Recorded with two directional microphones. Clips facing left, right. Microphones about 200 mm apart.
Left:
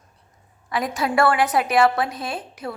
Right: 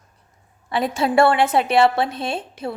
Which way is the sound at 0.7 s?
30° right (ahead or behind).